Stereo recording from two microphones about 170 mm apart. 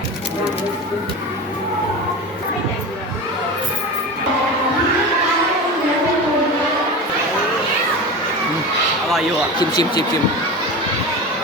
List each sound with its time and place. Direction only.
9.6 s speech: 25° left (ahead or behind)